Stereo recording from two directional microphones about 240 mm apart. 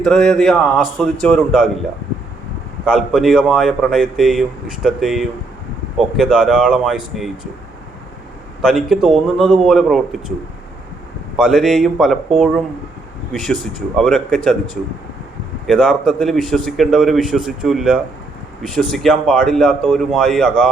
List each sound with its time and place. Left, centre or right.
0.0 s speech: centre
2.8 s speech: centre
8.6 s speech: centre
11.3 s speech: centre
13.3 s speech: centre